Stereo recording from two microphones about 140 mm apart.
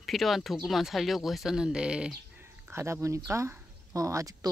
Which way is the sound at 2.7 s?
20° right (ahead or behind).